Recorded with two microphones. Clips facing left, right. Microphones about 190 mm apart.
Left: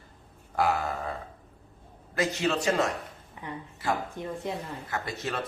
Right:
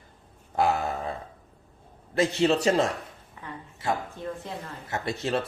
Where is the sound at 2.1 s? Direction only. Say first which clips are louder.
Right 5 dB; 30° right (ahead or behind).